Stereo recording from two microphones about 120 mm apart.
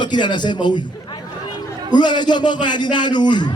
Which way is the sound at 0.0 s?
40° left (ahead or behind).